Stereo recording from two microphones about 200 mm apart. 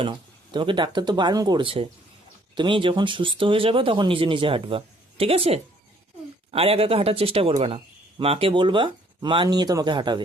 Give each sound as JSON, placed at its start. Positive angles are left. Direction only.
{"t": 0.0, "sound": "speech", "side_deg": -25}